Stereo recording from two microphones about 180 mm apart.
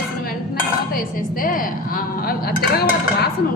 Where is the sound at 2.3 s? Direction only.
60° left (ahead or behind).